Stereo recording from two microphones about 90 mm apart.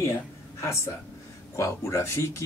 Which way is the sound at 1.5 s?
35° left (ahead or behind).